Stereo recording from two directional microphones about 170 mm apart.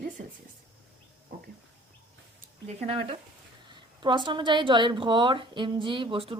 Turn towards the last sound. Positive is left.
turn(degrees=-30)  # may be behind; listen again after turning